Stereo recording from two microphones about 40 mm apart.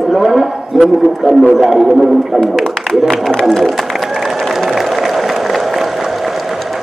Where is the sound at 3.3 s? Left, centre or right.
Centre.